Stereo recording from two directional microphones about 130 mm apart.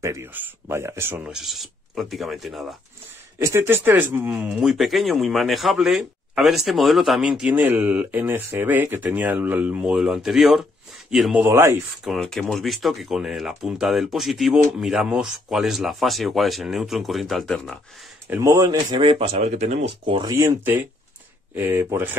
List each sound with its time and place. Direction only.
0.0 s speech: 20° right (ahead or behind)
1.3 s speech: centre (ahead or behind)
3.3 s speech: 20° right (ahead or behind); by 11.3 s 5° right (ahead or behind)
11.3 s speech: 20° right (ahead or behind)
12.0 s speech: centre (ahead or behind)
18.3 s speech: 25° right (ahead or behind)
18.9 s speech: 45° right (ahead or behind)
19.4 s speech: 60° right (ahead or behind)
20.2 s speech: 25° right (ahead or behind)